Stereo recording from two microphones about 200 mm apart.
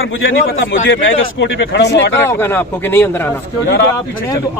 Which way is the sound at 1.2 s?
60° left (ahead or behind).